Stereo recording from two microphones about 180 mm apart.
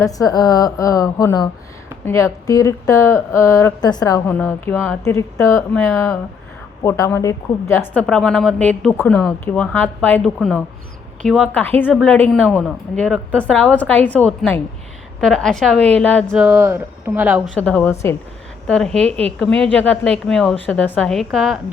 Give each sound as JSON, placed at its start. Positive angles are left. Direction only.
{"t": 0.0, "sound": "a woman's voice", "side_deg": 20}
{"t": 16.5, "sound": "speech", "side_deg": -10}
{"t": 17.5, "sound": "a woman's voice", "side_deg": 10}
{"t": 18.7, "sound": "speech", "side_deg": 5}